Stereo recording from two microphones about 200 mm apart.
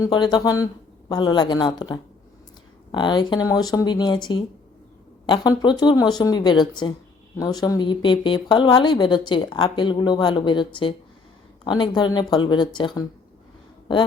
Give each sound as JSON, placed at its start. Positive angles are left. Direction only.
{"t": 0.0, "sound": "speech", "side_deg": 20}